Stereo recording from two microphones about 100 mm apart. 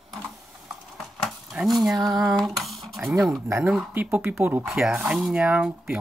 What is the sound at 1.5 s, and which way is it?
Speech, centre (ahead or behind).